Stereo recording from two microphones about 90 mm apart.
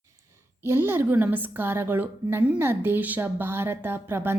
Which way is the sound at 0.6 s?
25° right (ahead or behind).